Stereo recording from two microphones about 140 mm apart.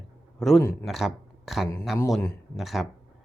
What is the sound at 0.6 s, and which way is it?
Speech, 15° left (ahead or behind).